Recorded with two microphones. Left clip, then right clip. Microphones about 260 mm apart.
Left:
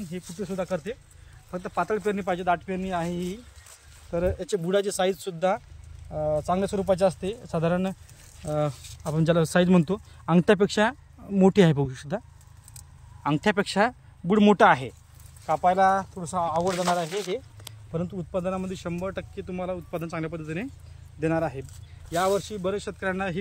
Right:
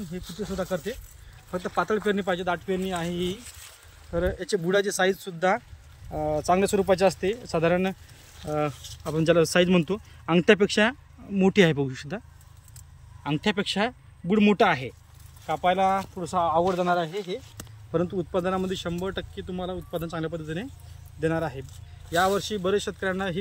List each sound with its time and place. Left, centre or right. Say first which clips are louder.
0.1 s speech: even; centre
13.2 s speech: left 3 dB; centre